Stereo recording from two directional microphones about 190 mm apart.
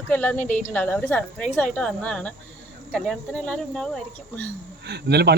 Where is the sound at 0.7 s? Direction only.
10° left (ahead or behind).